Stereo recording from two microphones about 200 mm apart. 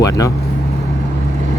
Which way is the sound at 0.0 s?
15° left (ahead or behind).